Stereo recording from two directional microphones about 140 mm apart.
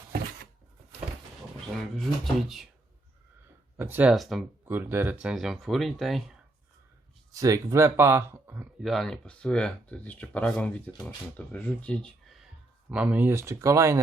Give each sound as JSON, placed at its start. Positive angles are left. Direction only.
{"t": 1.8, "sound": "speech", "side_deg": 0}
{"t": 3.8, "sound": "speech", "side_deg": -15}
{"t": 4.1, "sound": "speech", "side_deg": 0}
{"t": 4.6, "sound": "speech", "side_deg": -15}
{"t": 7.3, "sound": "speech", "side_deg": -25}
{"t": 8.8, "sound": "speech", "side_deg": 0}
{"t": 12.9, "sound": "speech", "side_deg": -10}